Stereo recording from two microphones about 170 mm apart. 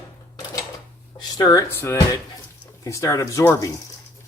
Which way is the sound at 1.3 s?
20° left (ahead or behind).